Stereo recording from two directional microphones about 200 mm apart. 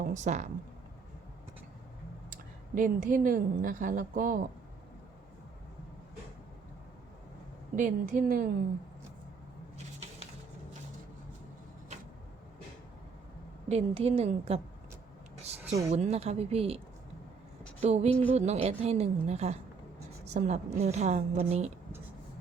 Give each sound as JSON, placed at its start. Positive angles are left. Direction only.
{"t": 0.0, "sound": "speech", "side_deg": -35}
{"t": 2.7, "sound": "a woman's voice", "side_deg": -40}
{"t": 7.8, "sound": "a woman's voice", "side_deg": -45}
{"t": 13.7, "sound": "a woman's voice", "side_deg": -30}
{"t": 15.9, "sound": "a woman's voice", "side_deg": -30}
{"t": 17.7, "sound": "a sound", "side_deg": -30}
{"t": 18.3, "sound": "a woman's voice", "side_deg": -35}